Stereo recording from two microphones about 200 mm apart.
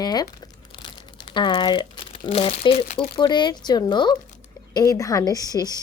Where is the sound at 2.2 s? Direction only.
30° left (ahead or behind).